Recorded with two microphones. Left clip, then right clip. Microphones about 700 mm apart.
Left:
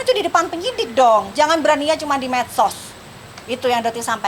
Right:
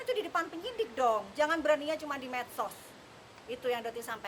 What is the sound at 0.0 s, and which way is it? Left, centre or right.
A woman's voice, left.